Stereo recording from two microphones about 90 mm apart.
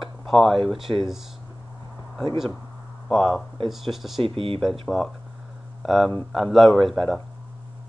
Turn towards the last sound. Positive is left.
turn(degrees=0)  # may be behind; listen again after turning